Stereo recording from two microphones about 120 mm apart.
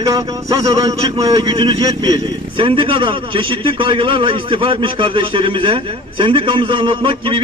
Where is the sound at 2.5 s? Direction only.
45° right (ahead or behind).